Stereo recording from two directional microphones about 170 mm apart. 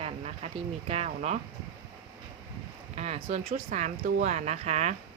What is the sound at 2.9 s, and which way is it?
Speech, 40° right (ahead or behind).